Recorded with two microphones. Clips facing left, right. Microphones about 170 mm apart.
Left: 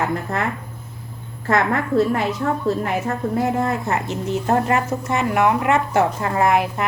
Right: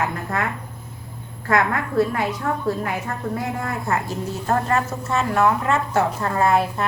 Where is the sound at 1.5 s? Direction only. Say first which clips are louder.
Left 2 dB; 25° left (ahead or behind).